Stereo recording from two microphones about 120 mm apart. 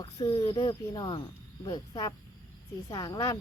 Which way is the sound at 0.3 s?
30° left (ahead or behind).